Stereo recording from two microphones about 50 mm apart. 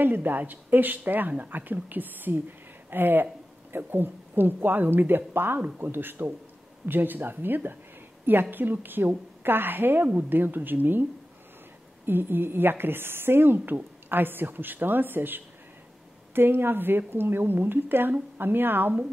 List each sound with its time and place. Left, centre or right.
0.0 s a woman's voice: right
12.1 s a woman's voice: right